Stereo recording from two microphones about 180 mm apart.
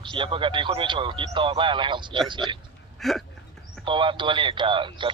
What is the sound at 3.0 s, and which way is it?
Speech, centre (ahead or behind).